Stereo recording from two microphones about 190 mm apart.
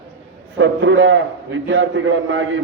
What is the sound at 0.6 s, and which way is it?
A man's voice, 80° right.